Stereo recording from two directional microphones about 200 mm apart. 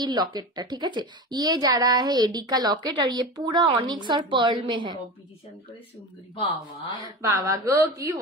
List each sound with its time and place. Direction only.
0.0 s a woman's voice: 20° right (ahead or behind)
6.9 s speech: 15° right (ahead or behind)